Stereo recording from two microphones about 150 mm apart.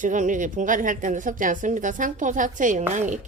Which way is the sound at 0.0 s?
60° right (ahead or behind).